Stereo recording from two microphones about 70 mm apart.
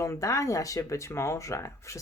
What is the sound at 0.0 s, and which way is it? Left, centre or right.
Speech, left.